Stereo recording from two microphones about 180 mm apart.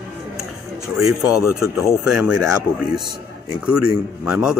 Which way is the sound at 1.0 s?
5° right (ahead or behind).